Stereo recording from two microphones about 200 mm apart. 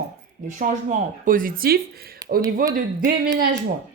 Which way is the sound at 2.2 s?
15° right (ahead or behind).